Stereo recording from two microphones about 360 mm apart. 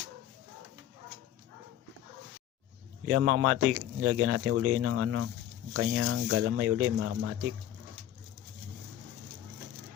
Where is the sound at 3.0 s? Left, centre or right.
Right.